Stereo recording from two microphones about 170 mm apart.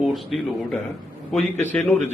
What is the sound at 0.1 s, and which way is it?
Speech, centre (ahead or behind).